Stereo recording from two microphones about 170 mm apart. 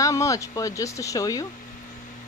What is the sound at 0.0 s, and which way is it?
Speech, 20° left (ahead or behind).